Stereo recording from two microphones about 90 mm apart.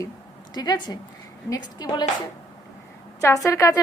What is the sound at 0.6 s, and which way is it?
A woman's voice, 50° left (ahead or behind).